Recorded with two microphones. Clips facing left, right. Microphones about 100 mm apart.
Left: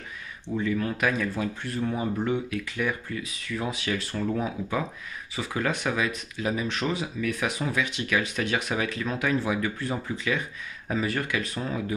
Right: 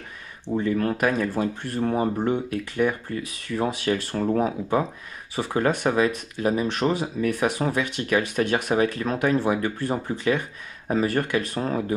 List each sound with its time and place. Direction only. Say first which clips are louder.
0.5 s speech: right 4 dB; 40° right (ahead or behind)
0.7 s speech: right 4 dB; 50° right (ahead or behind)